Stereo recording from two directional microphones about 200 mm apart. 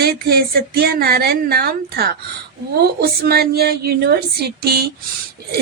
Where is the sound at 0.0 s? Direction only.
50° right (ahead or behind).